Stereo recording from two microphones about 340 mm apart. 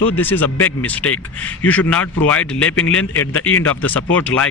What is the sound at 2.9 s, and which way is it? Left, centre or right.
Speech, left.